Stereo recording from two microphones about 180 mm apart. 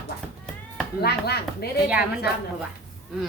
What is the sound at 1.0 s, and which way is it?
Speech, 65° left (ahead or behind).